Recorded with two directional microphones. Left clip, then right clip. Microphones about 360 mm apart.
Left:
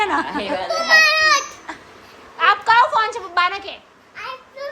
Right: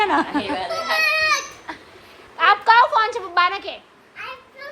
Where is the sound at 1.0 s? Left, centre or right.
Left.